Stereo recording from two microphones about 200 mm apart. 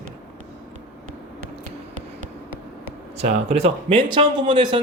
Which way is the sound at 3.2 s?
30° right (ahead or behind).